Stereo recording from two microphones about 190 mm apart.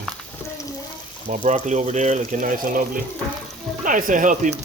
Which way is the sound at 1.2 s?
40° right (ahead or behind).